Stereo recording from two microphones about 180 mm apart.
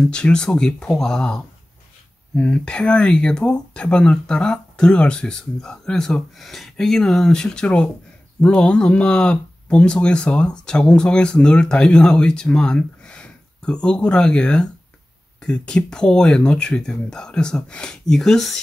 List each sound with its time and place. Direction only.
0.1 s speech: 5° left (ahead or behind)